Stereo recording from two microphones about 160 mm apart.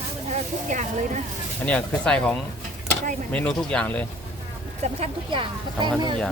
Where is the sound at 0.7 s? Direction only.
50° right (ahead or behind).